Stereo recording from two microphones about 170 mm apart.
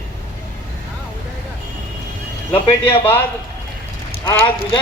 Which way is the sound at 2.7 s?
15° left (ahead or behind).